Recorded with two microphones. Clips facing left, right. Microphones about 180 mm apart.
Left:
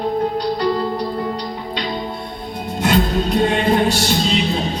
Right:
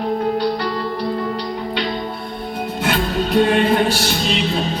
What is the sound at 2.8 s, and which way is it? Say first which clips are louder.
Music: left 3 dB; 45° left (ahead or behind).